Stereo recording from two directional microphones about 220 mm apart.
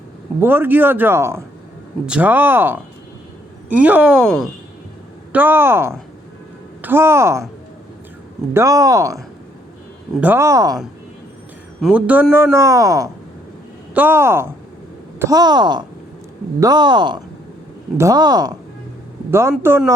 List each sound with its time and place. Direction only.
0.3 s a man's voice: 10° right (ahead or behind)
5.3 s a man's voice: 10° right (ahead or behind)
8.5 s a man's voice: 15° right (ahead or behind)
10.2 s a man's voice: 10° right (ahead or behind)
11.8 s a man's voice: 5° right (ahead or behind)